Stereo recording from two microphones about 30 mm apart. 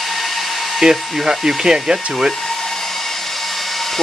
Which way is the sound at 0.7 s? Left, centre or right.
Centre.